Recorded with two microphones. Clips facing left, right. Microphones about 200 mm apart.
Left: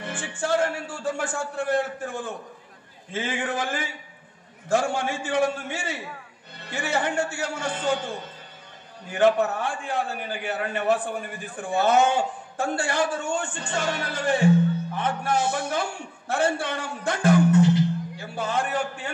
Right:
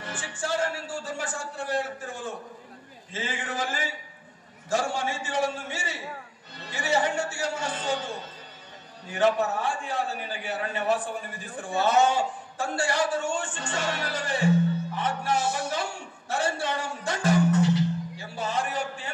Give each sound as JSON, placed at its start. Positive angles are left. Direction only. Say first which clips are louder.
{"t": 0.4, "sound": "a man's voice", "louder": "left 5 dB", "side_deg": 55}
{"t": 9.1, "sound": "a man's voice", "louder": "left 3 dB", "side_deg": 55}